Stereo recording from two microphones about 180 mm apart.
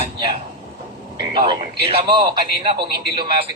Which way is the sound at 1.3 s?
25° right (ahead or behind).